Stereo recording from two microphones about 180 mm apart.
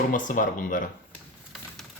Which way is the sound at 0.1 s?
45° left (ahead or behind).